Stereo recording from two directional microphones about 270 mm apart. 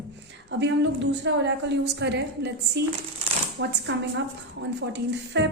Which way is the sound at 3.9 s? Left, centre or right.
Right.